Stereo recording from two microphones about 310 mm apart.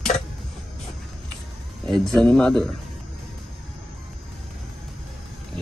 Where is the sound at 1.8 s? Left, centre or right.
Centre.